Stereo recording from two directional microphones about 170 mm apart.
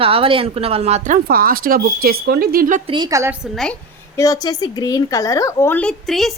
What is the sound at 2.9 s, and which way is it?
Speech, 25° right (ahead or behind).